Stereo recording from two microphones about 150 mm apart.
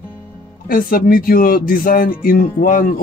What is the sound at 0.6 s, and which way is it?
Speech, 75° left (ahead or behind).